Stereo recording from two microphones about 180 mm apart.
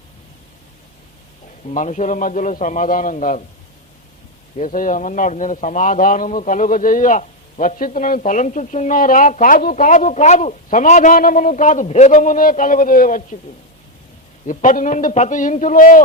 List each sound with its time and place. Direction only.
1.7 s a man's voice: 40° left (ahead or behind)
4.5 s a man's voice: 45° left (ahead or behind)
14.4 s a man's voice: 45° left (ahead or behind)